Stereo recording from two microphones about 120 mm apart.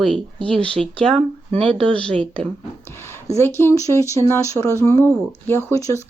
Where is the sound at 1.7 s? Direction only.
45° right (ahead or behind).